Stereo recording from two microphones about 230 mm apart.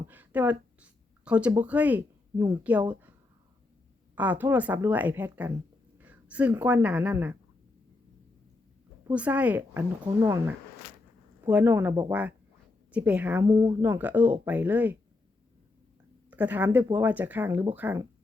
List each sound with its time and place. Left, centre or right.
0.1 s speech: centre
4.1 s speech: centre
9.0 s speech: centre
10.0 s speech: centre
13.4 s speech: centre
16.3 s speech: centre